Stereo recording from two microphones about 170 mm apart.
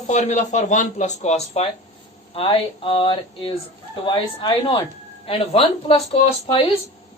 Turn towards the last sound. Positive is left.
turn(degrees=30)  # may be behind; listen again after turning